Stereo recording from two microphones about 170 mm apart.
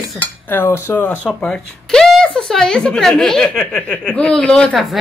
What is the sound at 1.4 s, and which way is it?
A woman's voice, 5° left (ahead or behind).